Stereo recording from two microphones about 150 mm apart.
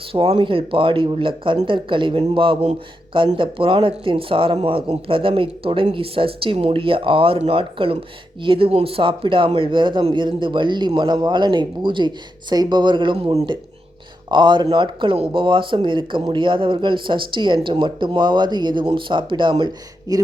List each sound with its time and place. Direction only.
0.0 s speech: 40° right (ahead or behind)